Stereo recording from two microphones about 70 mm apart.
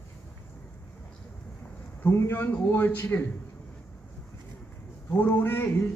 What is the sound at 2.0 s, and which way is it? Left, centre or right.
Speech, left.